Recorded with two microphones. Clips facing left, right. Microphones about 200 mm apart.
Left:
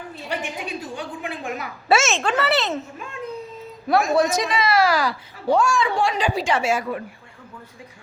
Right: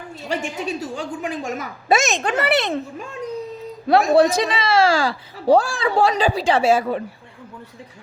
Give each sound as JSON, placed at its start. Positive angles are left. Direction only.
{"t": 0.2, "sound": "a woman's voice", "side_deg": -40}
{"t": 2.0, "sound": "speech", "side_deg": -15}
{"t": 3.8, "sound": "speech", "side_deg": -30}